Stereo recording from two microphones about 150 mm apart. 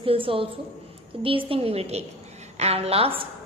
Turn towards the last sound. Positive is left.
turn(degrees=-40)  # may be behind; listen again after turning